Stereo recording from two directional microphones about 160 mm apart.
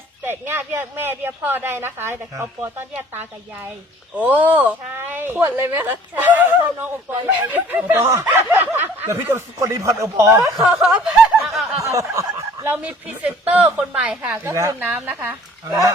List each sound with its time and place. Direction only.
0.3 s speech: 15° right (ahead or behind)
10.6 s snicker: centre (ahead or behind)
11.8 s speech: 20° right (ahead or behind)